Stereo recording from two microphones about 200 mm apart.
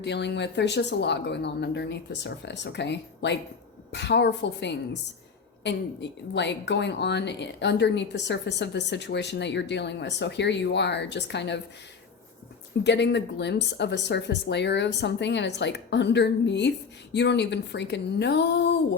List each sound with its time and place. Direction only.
0.0 s speech: 60° left (ahead or behind)
12.8 s speech: 60° left (ahead or behind)